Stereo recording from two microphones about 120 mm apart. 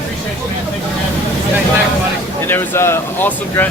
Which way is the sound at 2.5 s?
20° left (ahead or behind).